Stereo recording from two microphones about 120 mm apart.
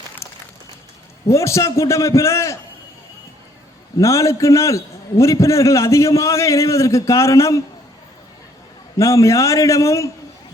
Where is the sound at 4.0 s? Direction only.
25° left (ahead or behind).